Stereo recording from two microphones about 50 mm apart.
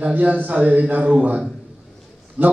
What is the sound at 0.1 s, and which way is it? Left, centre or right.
A man's voice, right.